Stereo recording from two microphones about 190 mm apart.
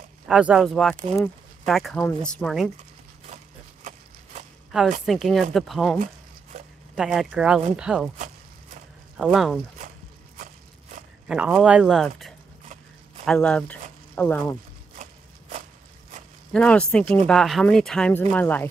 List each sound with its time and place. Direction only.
0.3 s speech: 5° right (ahead or behind)
3.8 s horse: 40° right (ahead or behind)
5.0 s speech: centre (ahead or behind)
7.0 s speech: 5° right (ahead or behind)
9.1 s speech: centre (ahead or behind)
10.4 s a sound: 45° right (ahead or behind)
11.2 s speech: 5° right (ahead or behind)
13.2 s speech: 5° left (ahead or behind)
16.5 s speech: 5° left (ahead or behind)